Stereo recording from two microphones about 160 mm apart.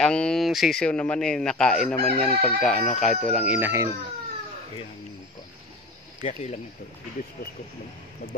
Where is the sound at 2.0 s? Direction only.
50° left (ahead or behind).